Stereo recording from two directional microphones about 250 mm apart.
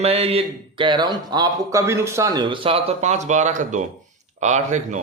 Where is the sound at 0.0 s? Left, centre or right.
Right.